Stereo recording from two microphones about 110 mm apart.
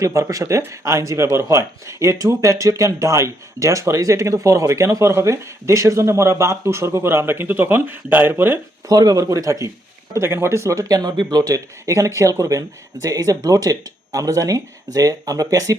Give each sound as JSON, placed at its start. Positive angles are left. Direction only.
{"t": 0.0, "sound": "speech", "side_deg": -30}
{"t": 8.9, "sound": "speech", "side_deg": -35}